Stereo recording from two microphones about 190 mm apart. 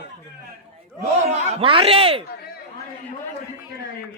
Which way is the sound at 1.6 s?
30° right (ahead or behind).